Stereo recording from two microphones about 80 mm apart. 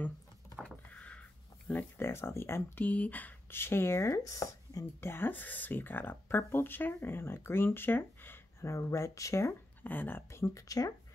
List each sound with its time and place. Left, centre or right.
0.7 s a sound: centre
1.7 s speech: left
4.1 s speech: left
5.0 s speech: left
9.8 s speech: left